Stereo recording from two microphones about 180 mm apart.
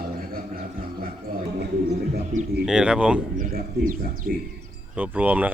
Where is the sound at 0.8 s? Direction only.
55° right (ahead or behind).